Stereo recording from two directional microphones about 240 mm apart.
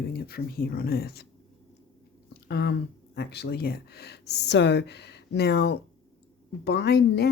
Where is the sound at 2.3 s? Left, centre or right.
Left.